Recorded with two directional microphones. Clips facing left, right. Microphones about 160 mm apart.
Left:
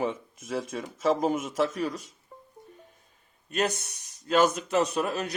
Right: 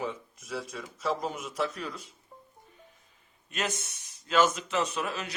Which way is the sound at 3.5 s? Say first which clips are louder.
Left 6 dB; 40° left (ahead or behind).